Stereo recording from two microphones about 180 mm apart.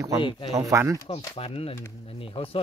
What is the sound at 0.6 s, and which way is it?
Speech, 15° right (ahead or behind).